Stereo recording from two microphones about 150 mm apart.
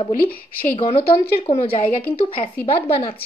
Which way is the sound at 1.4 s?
35° left (ahead or behind).